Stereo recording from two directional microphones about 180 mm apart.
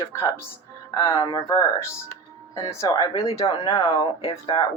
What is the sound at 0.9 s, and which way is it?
Speech, 20° left (ahead or behind).